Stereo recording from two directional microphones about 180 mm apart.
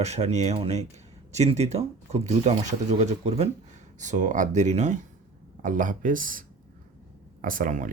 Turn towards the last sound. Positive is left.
turn(degrees=-45)  # may be behind; listen again after turning